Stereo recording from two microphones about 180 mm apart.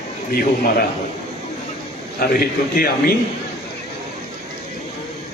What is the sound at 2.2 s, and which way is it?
Speech, 55° left (ahead or behind).